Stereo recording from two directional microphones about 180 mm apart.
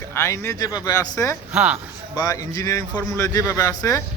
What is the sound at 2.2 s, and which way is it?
A man's voice, 20° left (ahead or behind).